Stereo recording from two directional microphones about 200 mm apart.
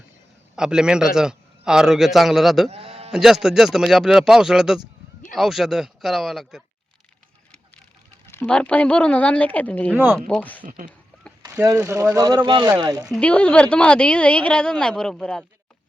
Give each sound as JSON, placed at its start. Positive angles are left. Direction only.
{"t": 0.5, "sound": "a woman's voice", "side_deg": -5}
{"t": 2.6, "sound": "sheep", "side_deg": -30}
{"t": 3.1, "sound": "a woman's voice", "side_deg": 0}
{"t": 8.3, "sound": "speech", "side_deg": 5}
{"t": 9.9, "sound": "speech", "side_deg": -10}
{"t": 10.2, "sound": "a woman's voice", "side_deg": 5}
{"t": 11.4, "sound": "speech", "side_deg": -10}
{"t": 13.1, "sound": "a woman's voice", "side_deg": 5}